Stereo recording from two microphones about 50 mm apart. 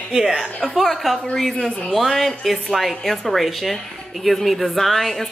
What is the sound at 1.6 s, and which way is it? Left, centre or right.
Speech, centre.